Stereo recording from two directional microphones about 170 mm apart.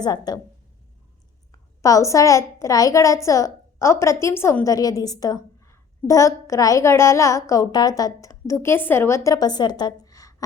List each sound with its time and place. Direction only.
0.0 s a woman's voice: 25° left (ahead or behind)
1.8 s a woman's voice: 20° left (ahead or behind)